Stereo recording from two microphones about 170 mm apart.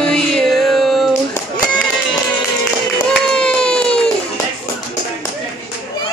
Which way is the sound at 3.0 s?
5° left (ahead or behind).